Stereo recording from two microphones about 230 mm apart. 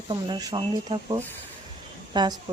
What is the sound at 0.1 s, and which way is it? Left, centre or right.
Speech, centre.